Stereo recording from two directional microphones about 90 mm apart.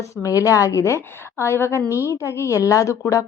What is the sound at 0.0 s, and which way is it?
Speech, 40° left (ahead or behind).